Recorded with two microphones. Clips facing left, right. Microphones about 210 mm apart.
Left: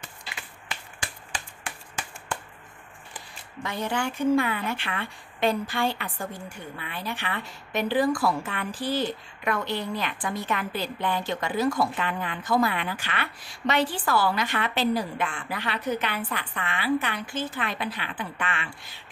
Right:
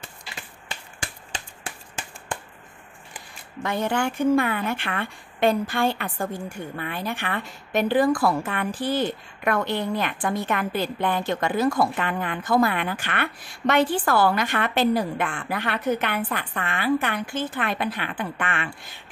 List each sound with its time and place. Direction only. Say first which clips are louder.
0.7 s finger snapping: right 1 dB; 25° right (ahead or behind)
3.6 s speech: right 4 dB; 55° right (ahead or behind)